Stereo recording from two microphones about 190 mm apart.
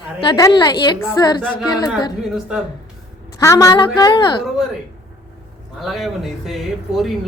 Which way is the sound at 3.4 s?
15° left (ahead or behind).